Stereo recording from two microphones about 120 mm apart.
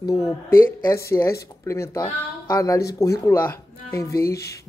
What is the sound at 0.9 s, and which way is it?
Speech, 25° left (ahead or behind).